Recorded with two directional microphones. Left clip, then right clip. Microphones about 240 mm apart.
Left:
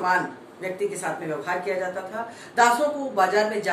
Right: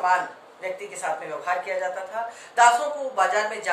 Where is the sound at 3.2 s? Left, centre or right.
Centre.